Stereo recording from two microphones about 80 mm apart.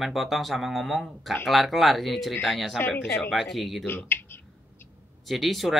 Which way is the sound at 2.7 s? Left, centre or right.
Left.